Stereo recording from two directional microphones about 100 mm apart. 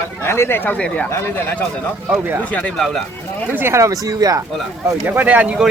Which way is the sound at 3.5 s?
25° right (ahead or behind).